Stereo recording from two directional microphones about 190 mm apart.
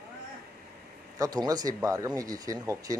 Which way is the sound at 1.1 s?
20° right (ahead or behind).